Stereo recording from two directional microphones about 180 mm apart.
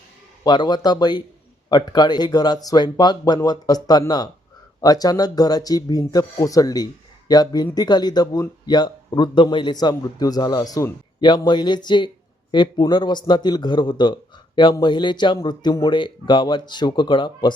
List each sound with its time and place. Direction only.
0.4 s speech: 25° left (ahead or behind)